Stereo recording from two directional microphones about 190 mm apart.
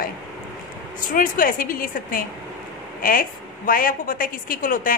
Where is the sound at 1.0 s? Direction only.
45° left (ahead or behind).